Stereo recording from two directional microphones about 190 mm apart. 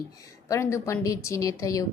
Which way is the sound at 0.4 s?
15° left (ahead or behind).